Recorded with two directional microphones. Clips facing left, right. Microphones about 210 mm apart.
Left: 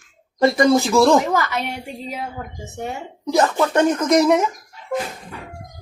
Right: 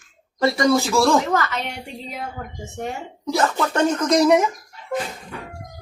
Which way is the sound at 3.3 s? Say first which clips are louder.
Left 3 dB; 15° left (ahead or behind).